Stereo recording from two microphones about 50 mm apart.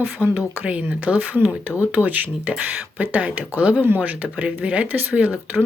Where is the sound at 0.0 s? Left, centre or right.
Right.